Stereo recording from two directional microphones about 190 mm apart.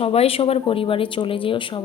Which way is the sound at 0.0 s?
30° left (ahead or behind).